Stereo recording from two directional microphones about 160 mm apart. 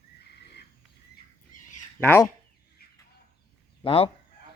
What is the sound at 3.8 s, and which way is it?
Speech, 35° left (ahead or behind).